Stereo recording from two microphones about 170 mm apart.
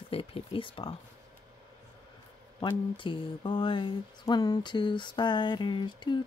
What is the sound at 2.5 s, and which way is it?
Speech, 30° left (ahead or behind).